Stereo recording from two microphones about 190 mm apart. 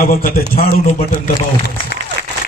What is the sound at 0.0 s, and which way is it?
Speech, 50° left (ahead or behind).